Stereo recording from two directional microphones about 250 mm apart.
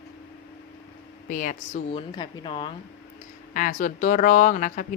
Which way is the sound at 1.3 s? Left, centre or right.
Left.